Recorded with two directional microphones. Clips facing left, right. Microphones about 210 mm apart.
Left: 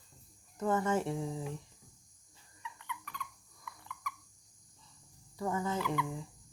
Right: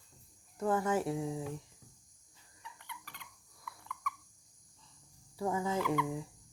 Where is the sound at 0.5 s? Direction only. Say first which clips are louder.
Even; 5° right (ahead or behind).